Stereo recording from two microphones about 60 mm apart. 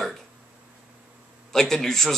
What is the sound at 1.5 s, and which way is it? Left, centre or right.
Speech, centre.